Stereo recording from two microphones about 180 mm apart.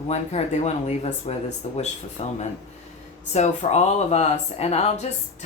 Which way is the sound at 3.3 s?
40° left (ahead or behind).